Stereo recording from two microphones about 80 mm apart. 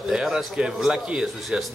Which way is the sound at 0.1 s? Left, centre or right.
Centre.